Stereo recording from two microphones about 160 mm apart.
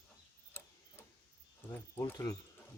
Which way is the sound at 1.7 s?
10° left (ahead or behind).